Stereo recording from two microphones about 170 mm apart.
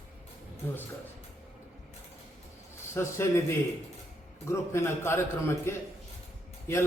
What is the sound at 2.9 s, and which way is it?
A man's voice, 15° left (ahead or behind).